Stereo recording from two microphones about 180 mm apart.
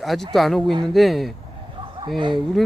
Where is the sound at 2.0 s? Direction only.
25° right (ahead or behind).